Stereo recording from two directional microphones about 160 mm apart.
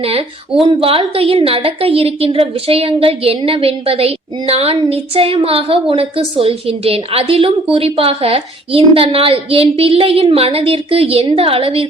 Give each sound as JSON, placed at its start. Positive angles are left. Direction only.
{"t": 0.0, "sound": "a woman's voice", "side_deg": -35}